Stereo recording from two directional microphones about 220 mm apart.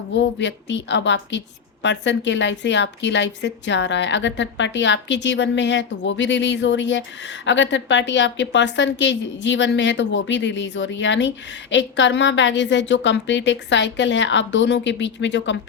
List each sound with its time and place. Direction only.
0.1 s a woman's voice: 55° left (ahead or behind)